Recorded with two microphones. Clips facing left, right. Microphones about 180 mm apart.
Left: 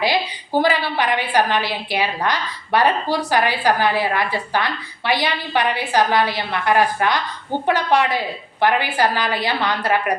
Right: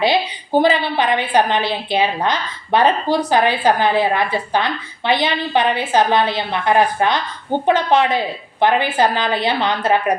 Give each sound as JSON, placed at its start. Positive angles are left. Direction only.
{"t": 0.0, "sound": "a woman's voice", "side_deg": -20}